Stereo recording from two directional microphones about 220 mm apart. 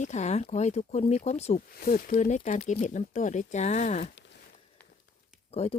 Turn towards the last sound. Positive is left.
turn(degrees=25)  # may be behind; listen again after turning